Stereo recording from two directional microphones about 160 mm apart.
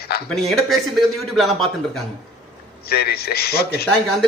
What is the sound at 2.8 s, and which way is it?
A man's voice, 80° left.